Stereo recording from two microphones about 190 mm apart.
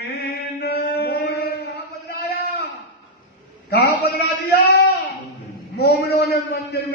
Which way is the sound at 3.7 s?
60° left (ahead or behind).